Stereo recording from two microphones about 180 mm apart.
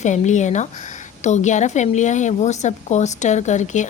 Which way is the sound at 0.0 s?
40° left (ahead or behind).